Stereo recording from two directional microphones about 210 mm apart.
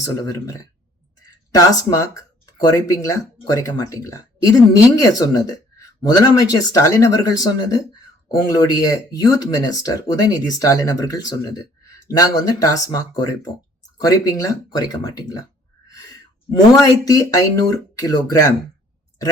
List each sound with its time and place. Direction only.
0.0 s speech: 15° left (ahead or behind)